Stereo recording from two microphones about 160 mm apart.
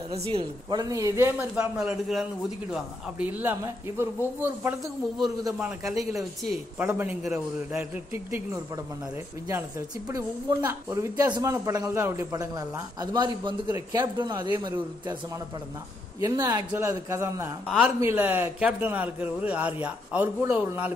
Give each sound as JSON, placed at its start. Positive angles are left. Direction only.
{"t": 0.1, "sound": "a woman's voice", "side_deg": -35}
{"t": 1.5, "sound": "speech", "side_deg": -5}
{"t": 9.5, "sound": "a woman's voice", "side_deg": -15}
{"t": 17.6, "sound": "speech", "side_deg": -5}